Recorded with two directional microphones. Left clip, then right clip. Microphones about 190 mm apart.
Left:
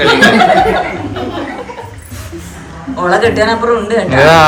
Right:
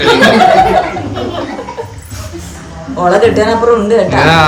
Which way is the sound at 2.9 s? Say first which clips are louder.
Right 2 dB; 40° right (ahead or behind).